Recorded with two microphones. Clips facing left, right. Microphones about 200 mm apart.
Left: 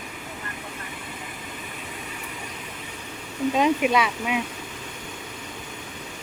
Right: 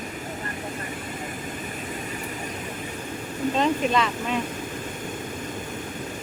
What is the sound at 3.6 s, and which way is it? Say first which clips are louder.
Speech: left 2 dB; 10° left (ahead or behind).